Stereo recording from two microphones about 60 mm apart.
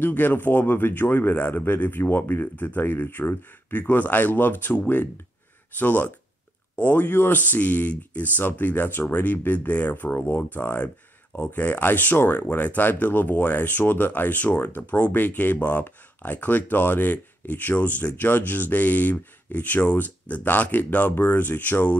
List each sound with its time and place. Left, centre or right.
0.0 s speech: left
21.1 s speech: left